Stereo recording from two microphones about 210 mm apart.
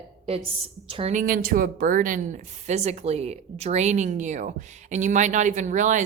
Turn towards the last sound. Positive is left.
turn(degrees=-35)  # may be behind; listen again after turning